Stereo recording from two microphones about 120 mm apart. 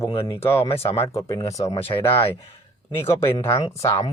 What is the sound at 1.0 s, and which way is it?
Speech, 25° left (ahead or behind).